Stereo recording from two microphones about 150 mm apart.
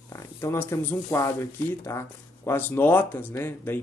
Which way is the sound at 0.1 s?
20° left (ahead or behind).